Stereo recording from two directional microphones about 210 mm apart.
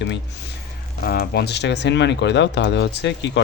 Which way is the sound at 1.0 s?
45° left (ahead or behind).